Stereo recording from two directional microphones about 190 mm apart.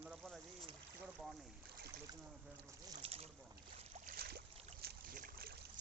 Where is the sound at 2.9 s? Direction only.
30° right (ahead or behind).